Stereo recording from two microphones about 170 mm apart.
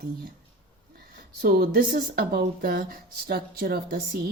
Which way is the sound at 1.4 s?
65° right (ahead or behind).